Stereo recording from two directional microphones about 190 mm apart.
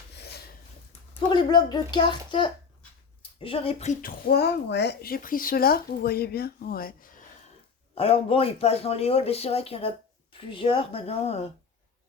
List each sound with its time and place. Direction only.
1.3 s a child's voice: 20° left (ahead or behind)
4.0 s speech: 55° left (ahead or behind)
7.9 s speech: 30° left (ahead or behind)